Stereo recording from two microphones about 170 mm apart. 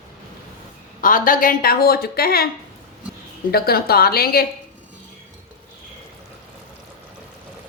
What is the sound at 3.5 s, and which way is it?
Speech, 65° left (ahead or behind).